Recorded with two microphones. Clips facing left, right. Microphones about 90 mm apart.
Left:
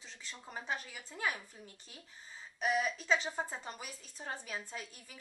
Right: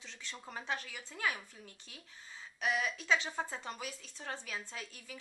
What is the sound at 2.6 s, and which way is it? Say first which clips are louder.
A woman's voice: left 2 dB; 5° left (ahead or behind).